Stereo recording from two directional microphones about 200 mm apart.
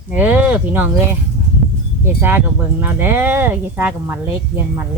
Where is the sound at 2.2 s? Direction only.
10° right (ahead or behind).